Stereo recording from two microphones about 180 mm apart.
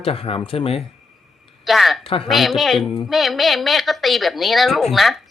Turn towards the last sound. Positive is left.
turn(degrees=0)  # may be behind; listen again after turning